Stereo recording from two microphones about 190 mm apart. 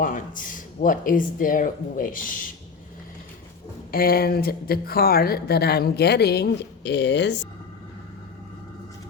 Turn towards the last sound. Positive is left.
turn(degrees=65)  # may be behind; listen again after turning